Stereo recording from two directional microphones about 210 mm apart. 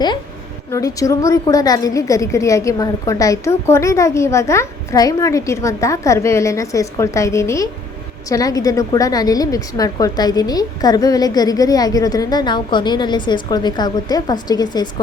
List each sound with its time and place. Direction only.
0.7 s a woman's voice: 15° left (ahead or behind)